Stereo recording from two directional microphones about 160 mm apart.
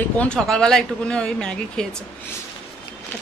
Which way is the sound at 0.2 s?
5° left (ahead or behind).